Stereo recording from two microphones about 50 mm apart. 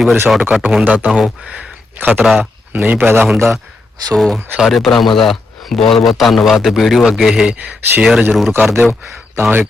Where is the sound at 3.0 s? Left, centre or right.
Right.